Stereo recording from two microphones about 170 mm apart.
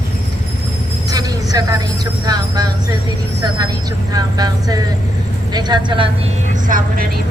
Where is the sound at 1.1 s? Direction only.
25° right (ahead or behind).